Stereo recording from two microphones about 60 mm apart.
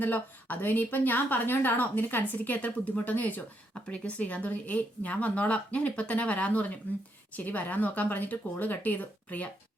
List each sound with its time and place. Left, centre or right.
0.0 s a woman's voice: left